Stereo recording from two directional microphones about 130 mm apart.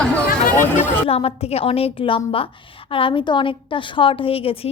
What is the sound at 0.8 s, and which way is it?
A woman's voice, 50° left (ahead or behind).